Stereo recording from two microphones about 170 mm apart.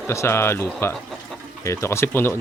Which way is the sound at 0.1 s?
15° left (ahead or behind).